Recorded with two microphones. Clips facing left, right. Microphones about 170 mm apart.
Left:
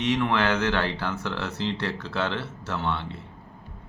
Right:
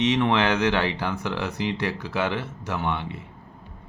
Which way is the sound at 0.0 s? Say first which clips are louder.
Right 3 dB; 20° right (ahead or behind).